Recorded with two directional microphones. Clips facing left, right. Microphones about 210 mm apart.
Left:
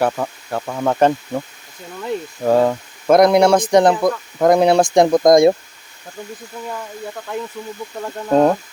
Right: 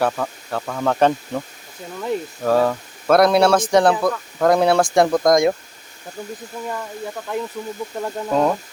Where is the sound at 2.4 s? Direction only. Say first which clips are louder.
Left 3 dB; 15° left (ahead or behind).